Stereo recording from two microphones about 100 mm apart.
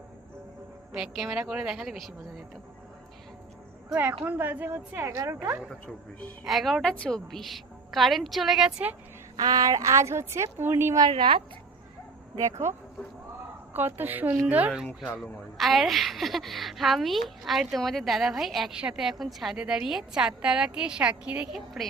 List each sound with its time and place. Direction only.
0.9 s speech: 5° right (ahead or behind)
4.2 s a woman's voice: 20° right (ahead or behind)
5.1 s speech: 35° right (ahead or behind)
5.4 s a woman's voice: 15° right (ahead or behind)
6.4 s speech: centre (ahead or behind)
9.3 s a woman's voice: 40° right (ahead or behind); by 10.9 s 25° right (ahead or behind)
11.1 s a woman's voice: 55° right (ahead or behind)
12.4 s speech: 30° right (ahead or behind)
13.7 s a woman's voice: 20° right (ahead or behind)
15.0 s a woman's voice: centre (ahead or behind)